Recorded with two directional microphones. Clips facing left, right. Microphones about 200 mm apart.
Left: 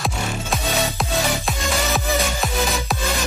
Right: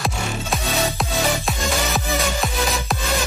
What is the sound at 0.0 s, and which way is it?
Music, centre (ahead or behind).